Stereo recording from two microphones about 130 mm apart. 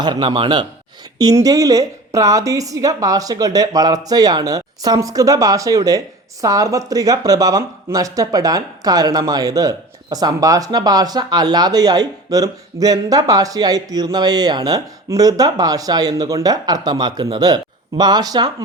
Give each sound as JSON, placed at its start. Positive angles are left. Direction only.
{"t": 0.0, "sound": "a man's voice", "side_deg": -35}
{"t": 1.2, "sound": "speech", "side_deg": -30}